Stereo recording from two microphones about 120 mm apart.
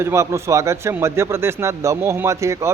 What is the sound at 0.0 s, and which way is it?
Speech, 20° right (ahead or behind).